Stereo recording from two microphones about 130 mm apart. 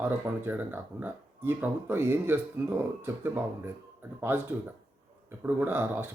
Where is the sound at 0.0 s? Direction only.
15° right (ahead or behind).